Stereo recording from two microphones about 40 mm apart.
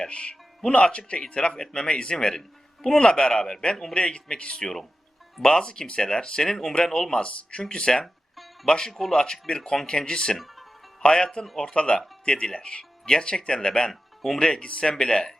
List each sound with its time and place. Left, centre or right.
0.1 s speech: left
4.6 s speech: centre
7.2 s speech: left
8.9 s a man's voice: centre
9.1 s speech: centre
9.6 s speech: centre
9.8 s speech: centre
10.3 s music: centre
11.0 s speech: centre
13.9 s music: centre
14.3 s speech: left